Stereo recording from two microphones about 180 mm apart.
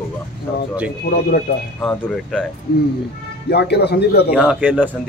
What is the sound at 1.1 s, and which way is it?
Speech, 55° left (ahead or behind).